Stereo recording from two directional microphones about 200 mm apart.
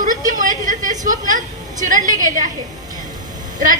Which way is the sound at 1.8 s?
40° right (ahead or behind).